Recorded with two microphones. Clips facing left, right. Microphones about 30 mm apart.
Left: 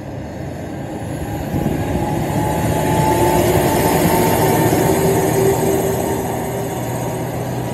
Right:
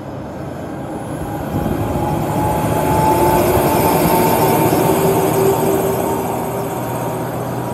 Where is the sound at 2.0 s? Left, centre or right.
Right.